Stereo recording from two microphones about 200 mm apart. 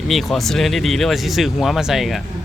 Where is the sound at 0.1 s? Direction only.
Centre (ahead or behind).